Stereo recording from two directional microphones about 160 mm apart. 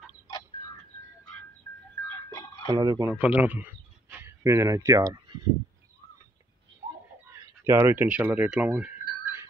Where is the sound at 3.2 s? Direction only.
10° right (ahead or behind).